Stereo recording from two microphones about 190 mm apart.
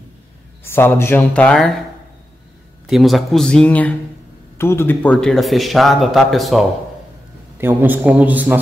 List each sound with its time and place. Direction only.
0.7 s speech: 10° left (ahead or behind)
2.9 s a man's voice: centre (ahead or behind)
7.5 s a man's voice: 10° right (ahead or behind)